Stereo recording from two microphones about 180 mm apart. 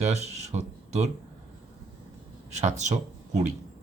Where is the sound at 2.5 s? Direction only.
40° right (ahead or behind).